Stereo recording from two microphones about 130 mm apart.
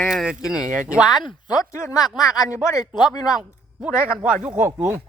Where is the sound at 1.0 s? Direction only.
30° left (ahead or behind).